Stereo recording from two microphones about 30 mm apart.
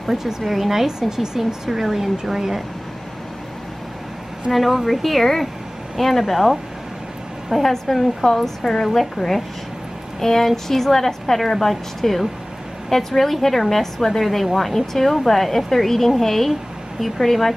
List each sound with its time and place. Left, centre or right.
0.0 s speech: centre
1.4 s speech: centre
4.5 s a woman's voice: centre
7.6 s a woman's voice: centre
8.8 s a woman's voice: centre
9.1 s a woman's voice: centre